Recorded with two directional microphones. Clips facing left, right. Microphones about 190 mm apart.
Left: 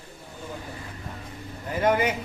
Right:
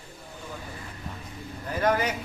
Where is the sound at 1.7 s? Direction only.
20° left (ahead or behind).